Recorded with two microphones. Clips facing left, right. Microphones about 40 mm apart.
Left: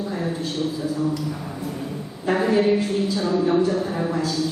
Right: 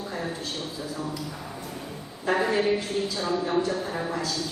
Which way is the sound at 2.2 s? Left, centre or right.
Centre.